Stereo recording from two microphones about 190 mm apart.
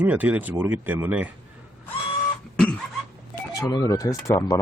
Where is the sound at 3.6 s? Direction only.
15° left (ahead or behind).